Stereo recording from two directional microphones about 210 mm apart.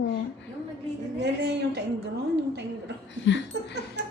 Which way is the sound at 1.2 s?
50° right (ahead or behind).